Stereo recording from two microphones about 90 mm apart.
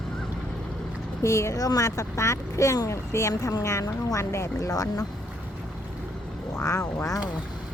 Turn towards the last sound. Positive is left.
turn(degrees=35)  # may be behind; listen again after turning